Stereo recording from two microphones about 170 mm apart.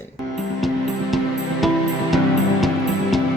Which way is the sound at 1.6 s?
Centre (ahead or behind).